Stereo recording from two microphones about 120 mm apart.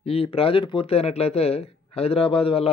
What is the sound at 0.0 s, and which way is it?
Speech, 55° left (ahead or behind).